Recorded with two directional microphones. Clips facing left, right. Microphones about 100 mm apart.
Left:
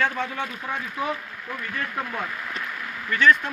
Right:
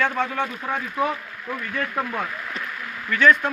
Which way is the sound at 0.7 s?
45° right (ahead or behind).